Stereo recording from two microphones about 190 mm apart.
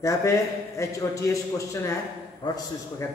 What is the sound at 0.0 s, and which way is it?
A man's voice, 15° left (ahead or behind).